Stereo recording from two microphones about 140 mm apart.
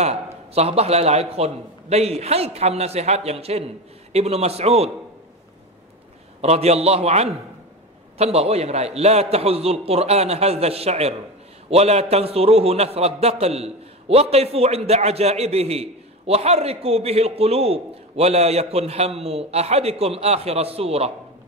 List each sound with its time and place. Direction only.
0.0 s a man's voice: 50° right (ahead or behind)
6.4 s a man's voice: 50° right (ahead or behind)